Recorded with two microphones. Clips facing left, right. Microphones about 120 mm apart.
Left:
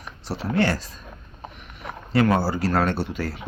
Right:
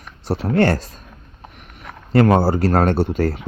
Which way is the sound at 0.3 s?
50° right (ahead or behind).